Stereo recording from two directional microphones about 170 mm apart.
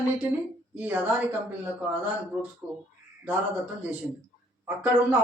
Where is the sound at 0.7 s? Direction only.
10° right (ahead or behind).